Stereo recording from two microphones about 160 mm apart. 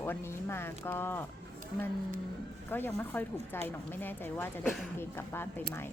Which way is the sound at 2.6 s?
10° left (ahead or behind).